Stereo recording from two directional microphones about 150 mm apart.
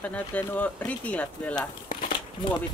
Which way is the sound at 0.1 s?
10° left (ahead or behind).